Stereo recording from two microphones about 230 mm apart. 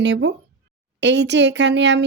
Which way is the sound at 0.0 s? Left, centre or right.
Right.